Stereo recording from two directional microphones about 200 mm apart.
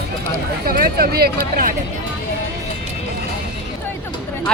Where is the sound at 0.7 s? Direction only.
45° right (ahead or behind).